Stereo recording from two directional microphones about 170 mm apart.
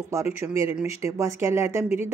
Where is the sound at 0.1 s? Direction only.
15° right (ahead or behind).